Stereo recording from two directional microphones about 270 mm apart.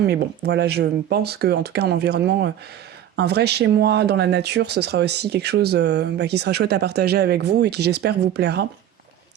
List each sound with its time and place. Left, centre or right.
0.0 s speech: right